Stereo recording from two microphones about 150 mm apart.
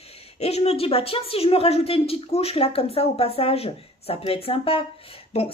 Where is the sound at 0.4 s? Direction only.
45° left (ahead or behind).